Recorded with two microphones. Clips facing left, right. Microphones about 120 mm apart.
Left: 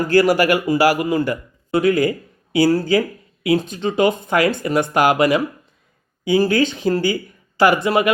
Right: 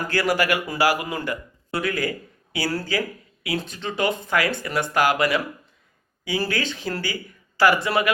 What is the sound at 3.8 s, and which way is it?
Speech, 15° left (ahead or behind).